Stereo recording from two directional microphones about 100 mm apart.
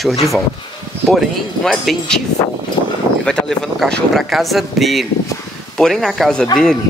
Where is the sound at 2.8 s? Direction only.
55° left (ahead or behind).